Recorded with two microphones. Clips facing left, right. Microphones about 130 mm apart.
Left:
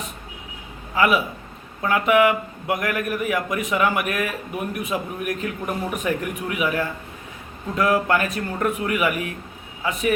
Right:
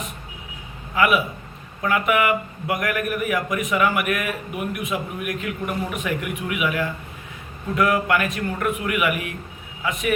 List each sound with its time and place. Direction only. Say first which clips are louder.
0.9 s a man's voice: even; 25° left (ahead or behind)